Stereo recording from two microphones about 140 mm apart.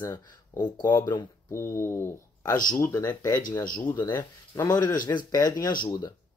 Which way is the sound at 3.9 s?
30° left (ahead or behind).